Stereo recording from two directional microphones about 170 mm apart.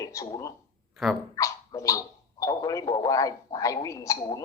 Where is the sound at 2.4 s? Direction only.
20° left (ahead or behind).